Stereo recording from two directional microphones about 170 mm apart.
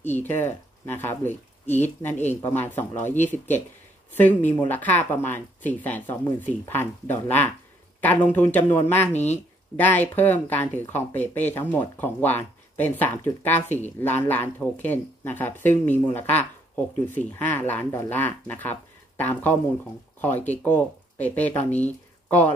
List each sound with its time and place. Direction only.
0.0 s speech: 10° left (ahead or behind)
9.1 s speech: 40° left (ahead or behind)
9.8 s speech: 10° left (ahead or behind)